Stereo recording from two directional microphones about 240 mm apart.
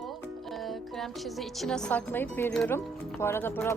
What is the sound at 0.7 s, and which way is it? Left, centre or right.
Speech, centre.